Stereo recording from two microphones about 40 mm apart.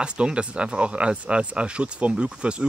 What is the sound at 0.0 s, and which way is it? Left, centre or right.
Speech, right.